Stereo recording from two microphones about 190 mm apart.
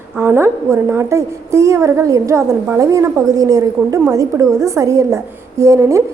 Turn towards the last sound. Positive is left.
turn(degrees=-15)  # may be behind; listen again after turning